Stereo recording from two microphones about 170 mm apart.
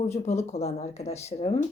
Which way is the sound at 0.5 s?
40° left (ahead or behind).